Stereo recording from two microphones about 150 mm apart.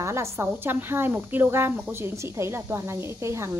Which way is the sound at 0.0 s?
20° right (ahead or behind).